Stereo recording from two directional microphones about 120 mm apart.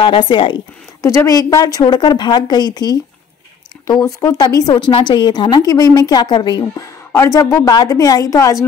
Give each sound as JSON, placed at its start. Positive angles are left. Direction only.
{"t": 0.0, "sound": "speech", "side_deg": 40}
{"t": 1.0, "sound": "speech", "side_deg": 25}